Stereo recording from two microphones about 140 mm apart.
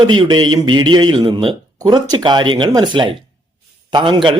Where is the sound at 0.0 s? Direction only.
30° right (ahead or behind).